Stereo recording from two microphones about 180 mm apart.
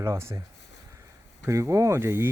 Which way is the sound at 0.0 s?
15° right (ahead or behind).